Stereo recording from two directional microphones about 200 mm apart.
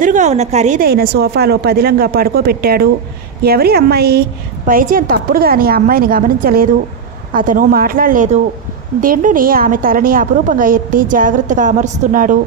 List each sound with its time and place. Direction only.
0.0 s a woman's voice: 40° right (ahead or behind)